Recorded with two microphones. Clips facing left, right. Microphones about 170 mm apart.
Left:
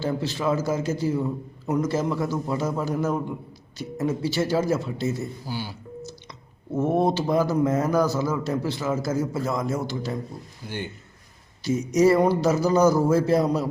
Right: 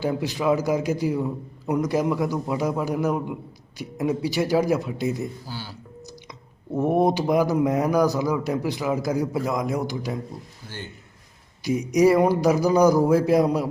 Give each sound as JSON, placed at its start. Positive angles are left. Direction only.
{"t": 0.0, "sound": "speech", "side_deg": -15}
{"t": 5.5, "sound": "speech", "side_deg": 15}
{"t": 6.7, "sound": "speech", "side_deg": -15}
{"t": 10.6, "sound": "speech", "side_deg": 15}
{"t": 11.6, "sound": "speech", "side_deg": -15}